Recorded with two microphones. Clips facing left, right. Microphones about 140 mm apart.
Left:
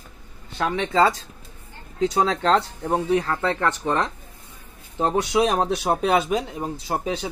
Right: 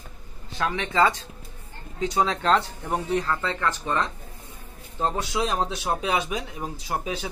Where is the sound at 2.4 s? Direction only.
30° left (ahead or behind).